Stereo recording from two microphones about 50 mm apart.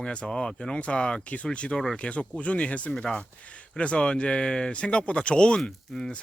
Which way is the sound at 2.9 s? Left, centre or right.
Centre.